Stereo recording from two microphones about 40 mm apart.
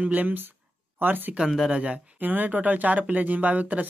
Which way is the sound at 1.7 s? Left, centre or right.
Right.